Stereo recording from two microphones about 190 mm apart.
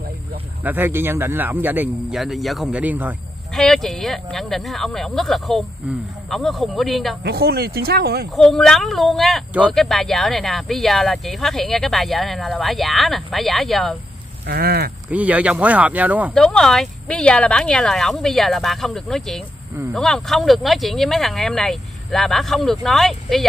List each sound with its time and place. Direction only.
0.7 s speech: 10° right (ahead or behind)
3.5 s speech: centre (ahead or behind)
7.2 s speech: 55° right (ahead or behind)
8.4 s speech: 5° left (ahead or behind)
14.4 s speech: 55° right (ahead or behind)
15.0 s speech: 10° right (ahead or behind)
16.3 s speech: 5° left (ahead or behind)